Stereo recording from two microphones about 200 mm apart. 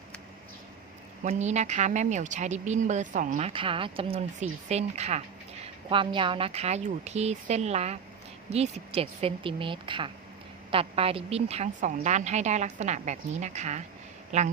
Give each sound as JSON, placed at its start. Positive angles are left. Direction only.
{"t": 1.2, "sound": "speech", "side_deg": -35}